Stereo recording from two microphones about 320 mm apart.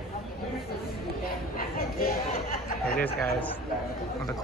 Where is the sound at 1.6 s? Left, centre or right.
Left.